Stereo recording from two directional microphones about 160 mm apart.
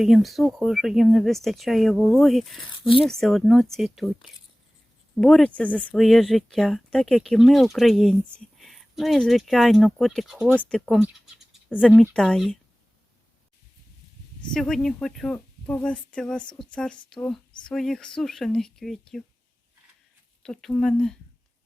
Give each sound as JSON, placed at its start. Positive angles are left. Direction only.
{"t": 0.0, "sound": "speech", "side_deg": 0}
{"t": 2.7, "sound": "speech", "side_deg": 35}
{"t": 3.0, "sound": "speech", "side_deg": 0}
{"t": 14.5, "sound": "speech", "side_deg": 5}
{"t": 20.4, "sound": "speech", "side_deg": 5}